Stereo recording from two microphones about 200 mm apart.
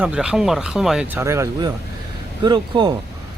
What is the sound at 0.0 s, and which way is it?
Speech, 5° right (ahead or behind).